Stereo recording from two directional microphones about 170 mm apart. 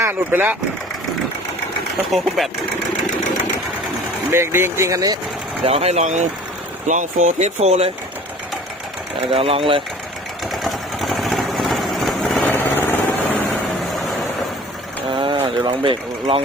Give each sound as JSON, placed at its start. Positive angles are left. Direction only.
{"t": 0.0, "sound": "speech", "side_deg": -15}
{"t": 2.1, "sound": "speech", "side_deg": 0}
{"t": 4.3, "sound": "speech", "side_deg": -15}
{"t": 5.6, "sound": "speech", "side_deg": -35}
{"t": 9.3, "sound": "speech", "side_deg": -35}
{"t": 10.5, "sound": "vehicle", "side_deg": 0}
{"t": 15.1, "sound": "a sound", "side_deg": -30}